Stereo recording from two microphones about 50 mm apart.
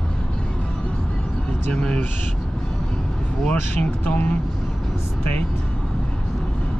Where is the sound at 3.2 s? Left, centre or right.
Left.